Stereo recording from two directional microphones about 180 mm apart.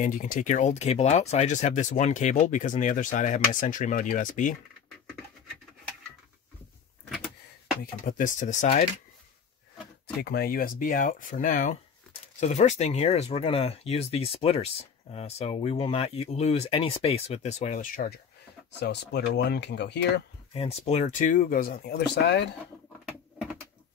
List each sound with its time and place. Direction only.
0.0 s speech: 50° left (ahead or behind)
7.8 s speech: 50° left (ahead or behind)
10.0 s speech: 60° left (ahead or behind)
18.8 s speech: 70° left (ahead or behind)
20.5 s speech: 35° left (ahead or behind); by 22.5 s 70° left (ahead or behind)